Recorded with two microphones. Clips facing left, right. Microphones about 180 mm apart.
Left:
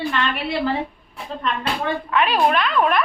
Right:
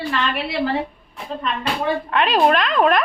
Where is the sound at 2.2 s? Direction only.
90° right.